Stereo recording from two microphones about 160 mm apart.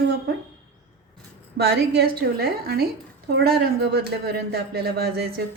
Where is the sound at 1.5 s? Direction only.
90° right.